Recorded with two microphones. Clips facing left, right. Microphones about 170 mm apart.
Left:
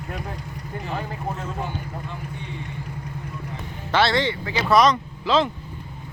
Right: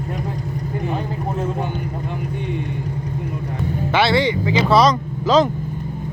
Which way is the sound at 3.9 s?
10° right (ahead or behind).